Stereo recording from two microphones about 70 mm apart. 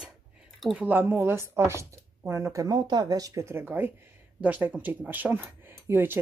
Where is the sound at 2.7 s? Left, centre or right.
Right.